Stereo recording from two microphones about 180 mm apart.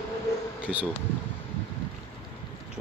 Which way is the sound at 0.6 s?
5° right (ahead or behind).